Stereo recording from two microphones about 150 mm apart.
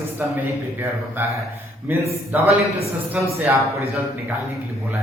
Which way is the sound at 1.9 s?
15° right (ahead or behind).